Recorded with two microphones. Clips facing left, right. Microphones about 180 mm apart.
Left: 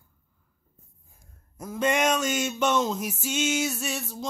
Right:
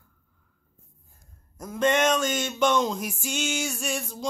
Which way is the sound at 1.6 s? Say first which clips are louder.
Right 2 dB; 5° left (ahead or behind).